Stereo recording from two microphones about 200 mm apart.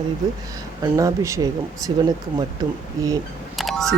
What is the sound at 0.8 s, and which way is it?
Speech, 15° right (ahead or behind).